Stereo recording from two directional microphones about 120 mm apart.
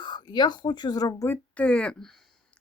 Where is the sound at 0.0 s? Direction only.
40° left (ahead or behind).